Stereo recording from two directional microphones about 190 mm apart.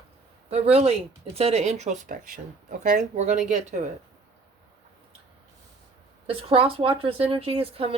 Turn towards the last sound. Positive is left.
turn(degrees=-30)  # may be behind; listen again after turning